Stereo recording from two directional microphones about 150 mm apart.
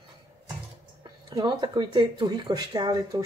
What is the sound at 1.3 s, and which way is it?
Speech, 25° right (ahead or behind).